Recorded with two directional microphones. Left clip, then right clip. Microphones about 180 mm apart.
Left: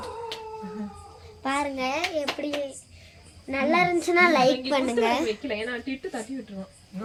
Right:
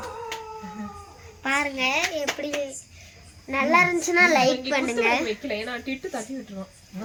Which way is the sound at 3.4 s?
55° left (ahead or behind).